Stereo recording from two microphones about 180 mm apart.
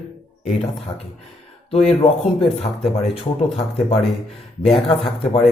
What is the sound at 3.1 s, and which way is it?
Speech, 35° left (ahead or behind).